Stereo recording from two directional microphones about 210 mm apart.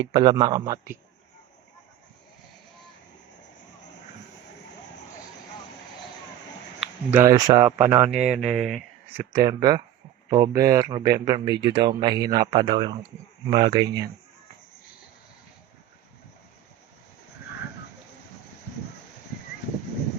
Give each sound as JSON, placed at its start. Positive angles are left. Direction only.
{"t": 0.0, "sound": "speech", "side_deg": -20}
{"t": 6.7, "sound": "speech", "side_deg": -5}
{"t": 8.3, "sound": "speech", "side_deg": 0}
{"t": 9.1, "sound": "speech", "side_deg": -15}